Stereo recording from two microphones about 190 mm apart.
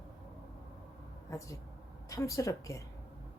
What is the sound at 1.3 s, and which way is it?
Speech, 15° left (ahead or behind).